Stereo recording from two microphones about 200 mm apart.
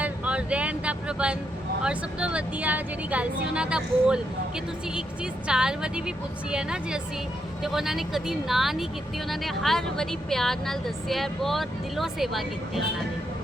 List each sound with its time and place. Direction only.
0.0 s vehicle: 5° right (ahead or behind)
1.8 s a woman's voice: 5° right (ahead or behind)